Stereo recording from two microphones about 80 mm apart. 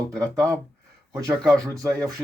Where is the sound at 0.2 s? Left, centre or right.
Right.